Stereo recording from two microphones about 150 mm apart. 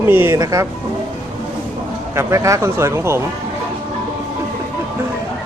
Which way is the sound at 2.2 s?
20° right (ahead or behind).